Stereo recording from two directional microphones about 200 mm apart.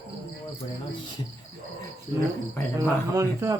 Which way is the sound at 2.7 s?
15° right (ahead or behind).